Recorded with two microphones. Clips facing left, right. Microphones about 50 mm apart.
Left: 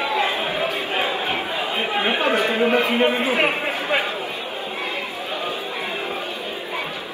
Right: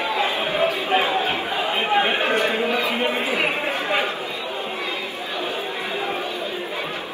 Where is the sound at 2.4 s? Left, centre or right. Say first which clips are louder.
Left 3 dB; left.